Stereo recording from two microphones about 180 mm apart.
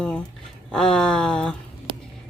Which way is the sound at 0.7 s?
5° left (ahead or behind).